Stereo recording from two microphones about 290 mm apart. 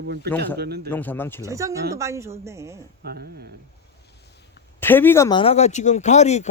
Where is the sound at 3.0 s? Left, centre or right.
Right.